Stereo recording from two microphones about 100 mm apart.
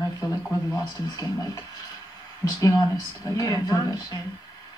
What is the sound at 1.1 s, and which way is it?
Speech, 35° left (ahead or behind).